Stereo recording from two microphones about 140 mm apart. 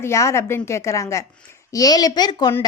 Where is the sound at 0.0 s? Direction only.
20° left (ahead or behind).